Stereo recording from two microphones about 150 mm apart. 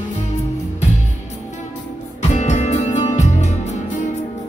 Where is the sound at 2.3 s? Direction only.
50° left (ahead or behind).